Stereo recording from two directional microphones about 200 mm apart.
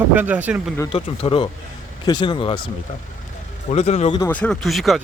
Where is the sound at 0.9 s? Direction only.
30° left (ahead or behind).